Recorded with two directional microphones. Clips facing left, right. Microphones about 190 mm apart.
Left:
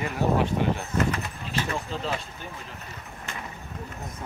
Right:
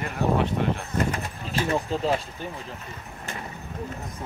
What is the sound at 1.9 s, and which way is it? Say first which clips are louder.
Speech: right 6 dB; 40° right (ahead or behind).